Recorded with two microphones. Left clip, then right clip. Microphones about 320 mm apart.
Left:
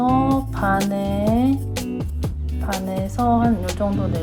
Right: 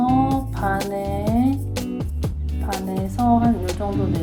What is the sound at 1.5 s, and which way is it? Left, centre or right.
Music, centre.